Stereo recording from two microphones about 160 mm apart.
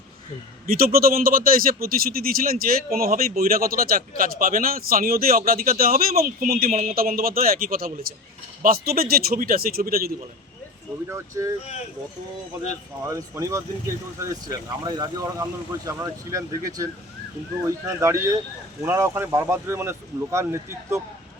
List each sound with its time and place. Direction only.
0.7 s a man's voice: 65° right (ahead or behind)
11.1 s speech: 20° right (ahead or behind)
13.1 s speech: 20° right (ahead or behind)